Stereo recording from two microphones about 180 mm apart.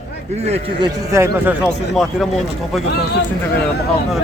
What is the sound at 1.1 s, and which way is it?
Speech, 15° right (ahead or behind).